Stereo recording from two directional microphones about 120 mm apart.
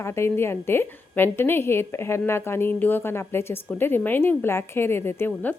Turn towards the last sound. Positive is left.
turn(degrees=15)  # may be behind; listen again after turning